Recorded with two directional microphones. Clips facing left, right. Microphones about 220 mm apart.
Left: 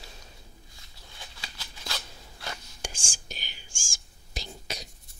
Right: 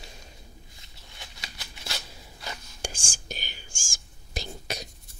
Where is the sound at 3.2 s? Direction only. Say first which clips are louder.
Right 9 dB; 50° right (ahead or behind).